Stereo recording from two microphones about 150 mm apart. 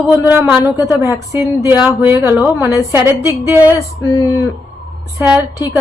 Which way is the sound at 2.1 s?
15° right (ahead or behind).